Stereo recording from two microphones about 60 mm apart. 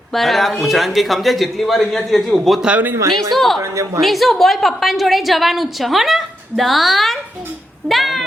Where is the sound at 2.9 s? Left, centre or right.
Right.